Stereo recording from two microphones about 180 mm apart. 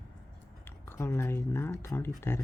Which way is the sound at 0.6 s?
15° left (ahead or behind).